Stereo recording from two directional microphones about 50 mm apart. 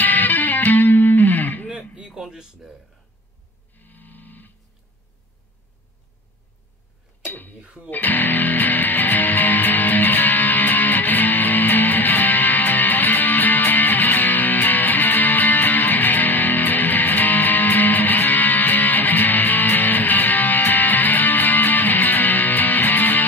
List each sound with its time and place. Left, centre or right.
0.0 s music: left
1.7 s a sound: right
2.1 s speech: centre
3.7 s music: left
7.6 s speech: right
7.9 s music: left